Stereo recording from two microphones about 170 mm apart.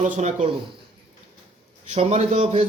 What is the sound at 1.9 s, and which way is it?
Speech, 40° right (ahead or behind).